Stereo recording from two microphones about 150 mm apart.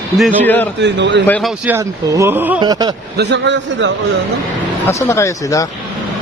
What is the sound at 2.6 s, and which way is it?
Speech, 25° right (ahead or behind).